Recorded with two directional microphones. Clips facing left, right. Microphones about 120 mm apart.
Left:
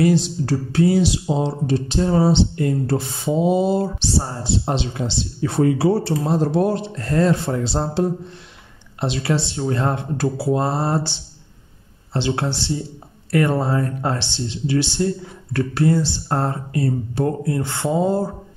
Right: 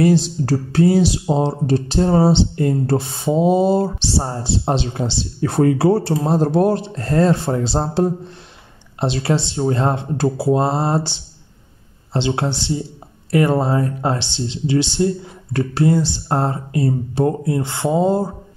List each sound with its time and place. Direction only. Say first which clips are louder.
0.0 s speech: right 2 dB; 35° right (ahead or behind)
5.4 s speech: right 2 dB; 50° right (ahead or behind); by 18.3 s 20° right (ahead or behind)